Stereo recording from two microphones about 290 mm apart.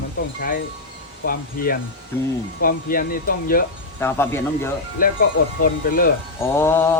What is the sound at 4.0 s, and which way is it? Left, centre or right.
Speech, centre.